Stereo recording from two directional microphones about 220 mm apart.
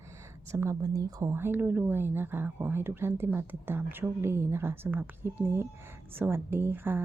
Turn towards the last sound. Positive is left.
turn(degrees=-10)  # may be behind; listen again after turning